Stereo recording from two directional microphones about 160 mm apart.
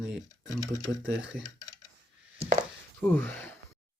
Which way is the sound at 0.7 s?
20° left (ahead or behind).